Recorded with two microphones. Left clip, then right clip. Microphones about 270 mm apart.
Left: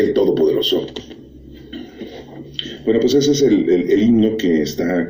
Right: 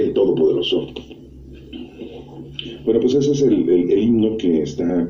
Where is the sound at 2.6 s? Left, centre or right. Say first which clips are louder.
Left 1 dB; left.